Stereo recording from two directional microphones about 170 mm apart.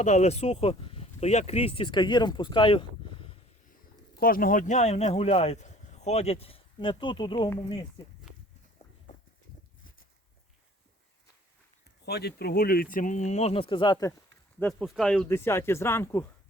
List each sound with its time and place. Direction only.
0.0 s speech: 40° left (ahead or behind)
4.1 s speech: 60° left (ahead or behind); by 7.5 s 30° left (ahead or behind)
8.8 s clip-clop: 35° left (ahead or behind)
12.0 s speech: 70° left (ahead or behind); by 14.1 s 25° left (ahead or behind)
14.6 s speech: 5° left (ahead or behind)
15.3 s speech: 15° left (ahead or behind)